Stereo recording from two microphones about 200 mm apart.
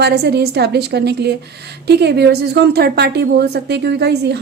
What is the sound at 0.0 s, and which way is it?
A woman's voice, 55° right (ahead or behind).